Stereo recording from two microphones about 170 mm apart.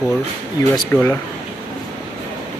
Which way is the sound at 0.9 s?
15° left (ahead or behind).